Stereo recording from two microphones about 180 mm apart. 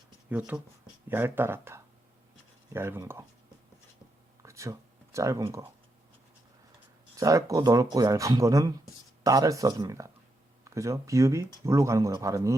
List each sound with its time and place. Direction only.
0.3 s speech: 10° right (ahead or behind)
4.4 s a sound: 15° right (ahead or behind)
7.2 s speech: 20° right (ahead or behind)